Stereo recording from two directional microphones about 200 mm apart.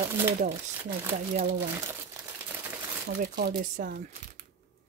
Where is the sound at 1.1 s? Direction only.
35° right (ahead or behind).